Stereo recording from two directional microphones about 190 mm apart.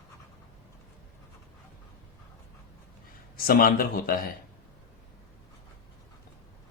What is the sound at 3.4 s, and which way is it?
Speech, 50° left (ahead or behind).